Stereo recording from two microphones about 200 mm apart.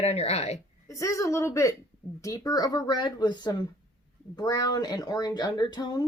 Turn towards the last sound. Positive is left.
turn(degrees=20)  # may be behind; listen again after turning